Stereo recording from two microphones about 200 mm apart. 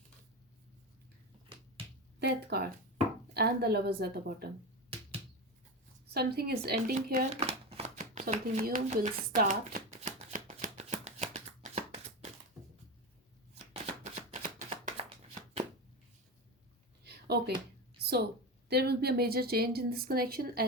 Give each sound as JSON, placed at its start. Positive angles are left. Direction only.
{"t": 2.1, "sound": "a woman's voice", "side_deg": -55}
{"t": 4.9, "sound": "typewriter", "side_deg": -30}
{"t": 6.1, "sound": "a woman's voice", "side_deg": -50}
{"t": 7.3, "sound": "a sound", "side_deg": -30}
{"t": 14.0, "sound": "shuffling cards", "side_deg": -35}
{"t": 17.0, "sound": "a sound", "side_deg": -55}
{"t": 18.7, "sound": "a woman's voice", "side_deg": -55}